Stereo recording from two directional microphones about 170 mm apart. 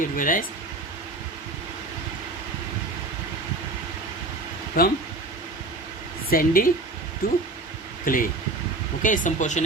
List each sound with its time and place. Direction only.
0.2 s speech: 55° left (ahead or behind)
4.8 s speech: 60° left (ahead or behind)
6.3 s speech: 55° left (ahead or behind)